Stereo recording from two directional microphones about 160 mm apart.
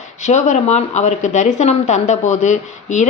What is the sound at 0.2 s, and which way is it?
A woman's voice, 45° left (ahead or behind).